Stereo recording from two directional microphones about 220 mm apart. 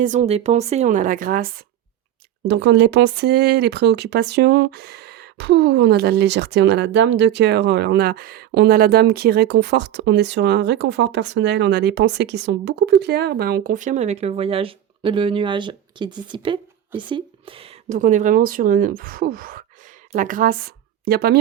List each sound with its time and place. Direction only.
0.0 s a woman's voice: 35° right (ahead or behind)
2.5 s a woman's voice: 55° right (ahead or behind)